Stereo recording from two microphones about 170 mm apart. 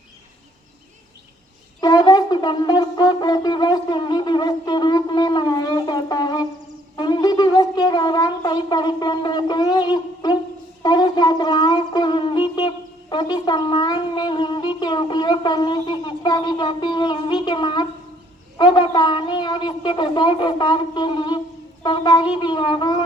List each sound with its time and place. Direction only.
1.8 s wind instrument: 25° left (ahead or behind)
10.8 s a sound: 25° left (ahead or behind)
17.4 s a woman's voice: 25° left (ahead or behind)